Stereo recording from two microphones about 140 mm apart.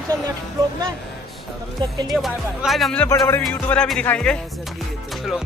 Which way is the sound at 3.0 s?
20° left (ahead or behind).